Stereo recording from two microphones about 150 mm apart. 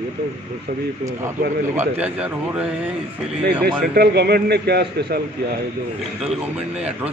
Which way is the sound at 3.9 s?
90° right.